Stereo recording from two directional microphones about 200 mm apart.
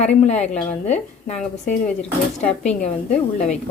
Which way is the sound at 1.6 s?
40° left (ahead or behind).